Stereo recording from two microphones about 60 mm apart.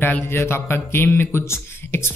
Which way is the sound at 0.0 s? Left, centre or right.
Left.